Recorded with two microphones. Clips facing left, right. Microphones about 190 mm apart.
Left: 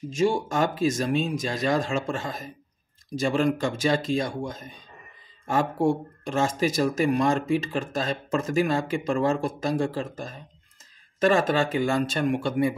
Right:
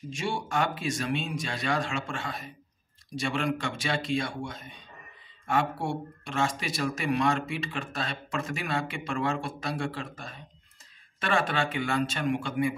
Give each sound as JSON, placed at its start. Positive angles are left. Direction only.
{"t": 0.1, "sound": "speech", "side_deg": 40}